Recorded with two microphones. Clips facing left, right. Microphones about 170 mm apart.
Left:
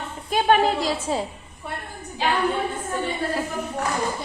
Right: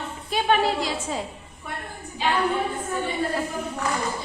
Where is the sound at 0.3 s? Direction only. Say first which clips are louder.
Left 3 dB; 45° left (ahead or behind).